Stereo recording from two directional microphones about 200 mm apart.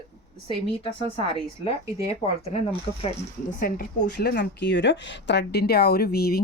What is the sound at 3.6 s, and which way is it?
A woman's voice, 50° left (ahead or behind).